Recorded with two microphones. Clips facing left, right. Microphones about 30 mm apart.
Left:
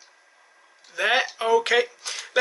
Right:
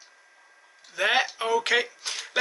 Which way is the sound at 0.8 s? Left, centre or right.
Centre.